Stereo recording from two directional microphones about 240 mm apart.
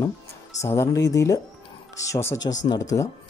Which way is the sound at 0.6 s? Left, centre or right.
Centre.